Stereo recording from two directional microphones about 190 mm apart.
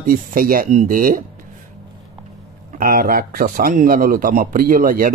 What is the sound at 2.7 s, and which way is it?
A man's voice, 50° right (ahead or behind).